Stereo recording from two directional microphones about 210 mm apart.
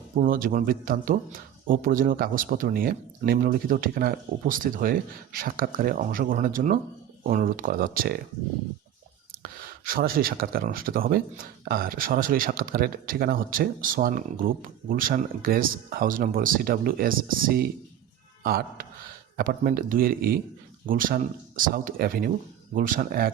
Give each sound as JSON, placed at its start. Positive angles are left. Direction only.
{"t": 0.2, "sound": "speech", "side_deg": -40}
{"t": 9.4, "sound": "speech", "side_deg": -45}